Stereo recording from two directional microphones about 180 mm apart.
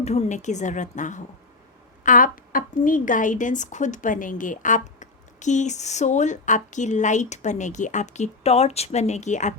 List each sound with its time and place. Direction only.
0.0 s a woman's voice: 35° left (ahead or behind)